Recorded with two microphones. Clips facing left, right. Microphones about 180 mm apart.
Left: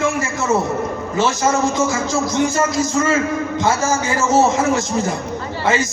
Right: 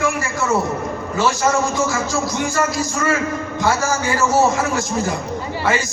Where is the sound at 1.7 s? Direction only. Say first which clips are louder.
Left 2 dB; 20° left (ahead or behind).